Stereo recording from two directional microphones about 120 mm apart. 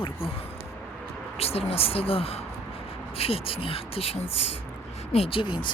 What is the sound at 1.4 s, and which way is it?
Speech, 55° left (ahead or behind).